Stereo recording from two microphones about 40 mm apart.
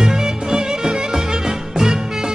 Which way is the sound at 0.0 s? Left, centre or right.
Centre.